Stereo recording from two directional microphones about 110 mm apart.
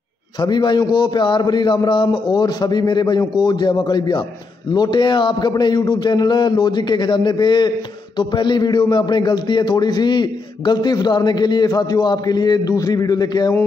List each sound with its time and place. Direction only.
0.4 s a man's voice: 40° left (ahead or behind)